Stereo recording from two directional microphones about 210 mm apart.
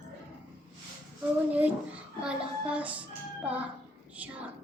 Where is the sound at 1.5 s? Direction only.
5° right (ahead or behind).